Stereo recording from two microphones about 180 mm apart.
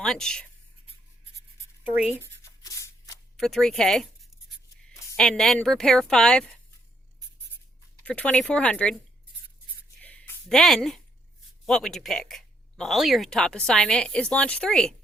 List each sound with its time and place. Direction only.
0.0 s speech: 5° left (ahead or behind)
1.4 s writing: 15° left (ahead or behind)
1.8 s speech: 5° right (ahead or behind)
2.2 s a sound: 15° left (ahead or behind)
3.3 s speech: centre (ahead or behind)
8.0 s speech: 5° left (ahead or behind)
10.0 s a sound: 10° left (ahead or behind)
11.6 s speech: centre (ahead or behind)